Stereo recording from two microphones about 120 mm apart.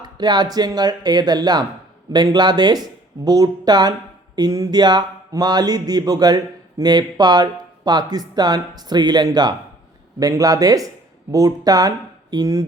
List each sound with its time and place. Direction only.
0.0 s speech: 35° right (ahead or behind)